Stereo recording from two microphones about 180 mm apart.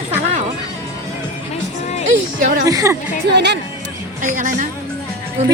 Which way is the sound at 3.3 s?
70° right (ahead or behind).